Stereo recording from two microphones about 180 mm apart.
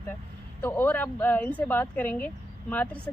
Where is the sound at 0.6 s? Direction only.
10° left (ahead or behind).